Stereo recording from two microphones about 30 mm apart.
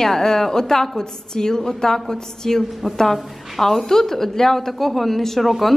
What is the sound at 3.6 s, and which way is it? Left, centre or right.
A woman's voice, centre.